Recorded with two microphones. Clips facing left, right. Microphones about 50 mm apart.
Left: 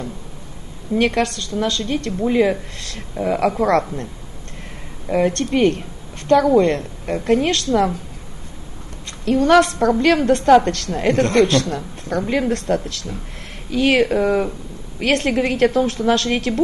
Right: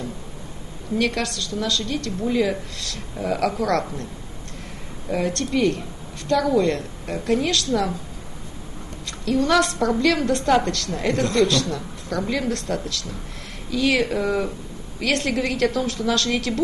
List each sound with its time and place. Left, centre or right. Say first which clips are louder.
0.9 s a woman's voice: left 5 dB; left
5.1 s a woman's voice: left 5 dB; left
9.2 s a woman's voice: left 6 dB; left